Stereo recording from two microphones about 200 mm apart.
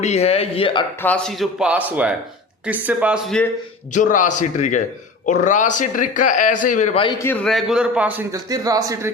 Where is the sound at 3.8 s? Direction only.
40° left (ahead or behind).